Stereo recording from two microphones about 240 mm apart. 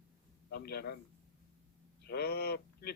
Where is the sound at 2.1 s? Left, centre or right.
Left.